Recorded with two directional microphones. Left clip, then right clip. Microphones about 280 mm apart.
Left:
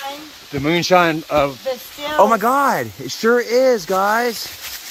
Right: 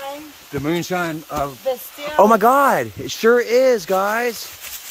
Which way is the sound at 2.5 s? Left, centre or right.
Centre.